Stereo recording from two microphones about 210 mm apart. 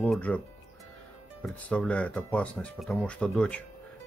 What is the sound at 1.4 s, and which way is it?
Speech, 5° left (ahead or behind).